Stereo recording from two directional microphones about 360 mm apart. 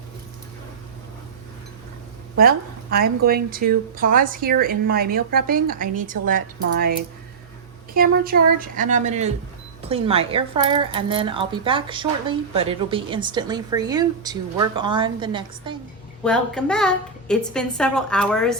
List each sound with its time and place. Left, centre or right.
2.4 s a woman's voice: right
7.9 s a woman's voice: right
16.2 s a woman's voice: centre